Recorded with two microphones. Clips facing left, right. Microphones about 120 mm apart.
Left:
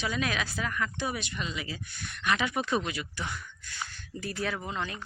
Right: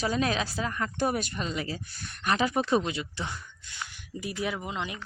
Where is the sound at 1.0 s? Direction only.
45° right (ahead or behind).